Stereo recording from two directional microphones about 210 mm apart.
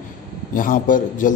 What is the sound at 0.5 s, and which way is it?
Speech, 40° left (ahead or behind).